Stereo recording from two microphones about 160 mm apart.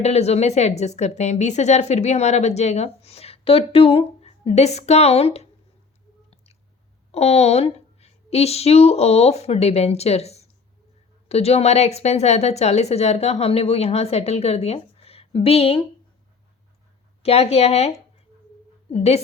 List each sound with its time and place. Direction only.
0.0 s a woman's voice: 40° left (ahead or behind)
6.3 s chewing: 40° left (ahead or behind)
7.1 s a woman's voice: 40° left (ahead or behind)
17.2 s a woman's voice: 40° left (ahead or behind)